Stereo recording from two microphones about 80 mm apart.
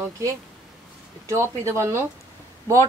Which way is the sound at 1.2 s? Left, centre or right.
Right.